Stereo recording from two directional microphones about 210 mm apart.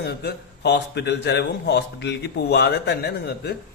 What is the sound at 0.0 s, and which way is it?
A man's voice, 50° left (ahead or behind).